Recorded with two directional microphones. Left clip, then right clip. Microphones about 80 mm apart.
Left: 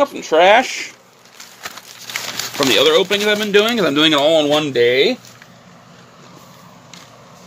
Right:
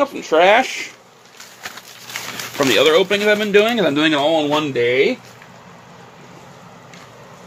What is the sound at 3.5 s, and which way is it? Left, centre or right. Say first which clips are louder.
Speech: even; left.